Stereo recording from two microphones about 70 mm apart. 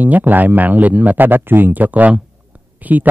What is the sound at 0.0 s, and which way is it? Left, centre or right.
Speech, right.